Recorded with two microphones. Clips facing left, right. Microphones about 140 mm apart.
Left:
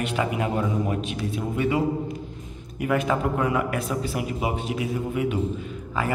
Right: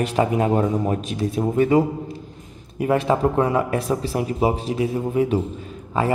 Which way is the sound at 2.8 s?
30° right (ahead or behind).